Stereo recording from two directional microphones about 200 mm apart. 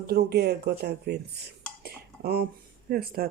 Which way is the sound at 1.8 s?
50° right (ahead or behind).